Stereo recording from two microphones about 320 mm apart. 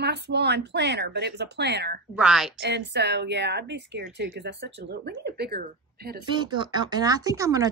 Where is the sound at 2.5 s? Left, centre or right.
Right.